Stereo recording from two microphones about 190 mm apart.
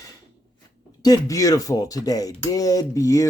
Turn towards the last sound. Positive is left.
turn(degrees=15)  # may be behind; listen again after turning